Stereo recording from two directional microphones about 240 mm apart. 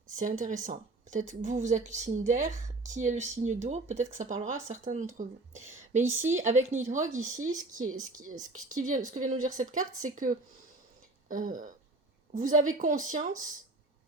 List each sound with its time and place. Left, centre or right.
0.2 s a woman's voice: right
6.0 s speech: centre
6.2 s a woman's voice: right